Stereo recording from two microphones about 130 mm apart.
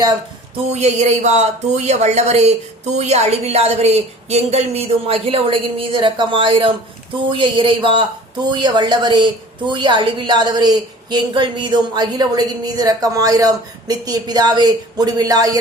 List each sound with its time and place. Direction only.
0.7 s a woman's voice: 60° right (ahead or behind); by 15.5 s 30° right (ahead or behind)